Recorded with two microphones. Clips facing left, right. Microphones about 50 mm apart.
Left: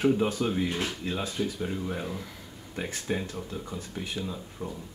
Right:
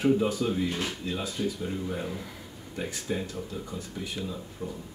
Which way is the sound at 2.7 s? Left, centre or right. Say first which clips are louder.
Left 1 dB; left.